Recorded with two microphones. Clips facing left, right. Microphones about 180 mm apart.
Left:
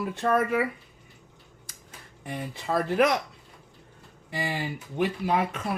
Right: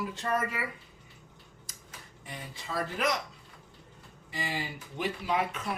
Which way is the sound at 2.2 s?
60° left (ahead or behind).